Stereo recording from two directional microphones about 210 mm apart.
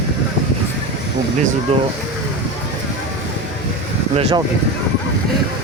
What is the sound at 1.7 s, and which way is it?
Speech, 30° right (ahead or behind).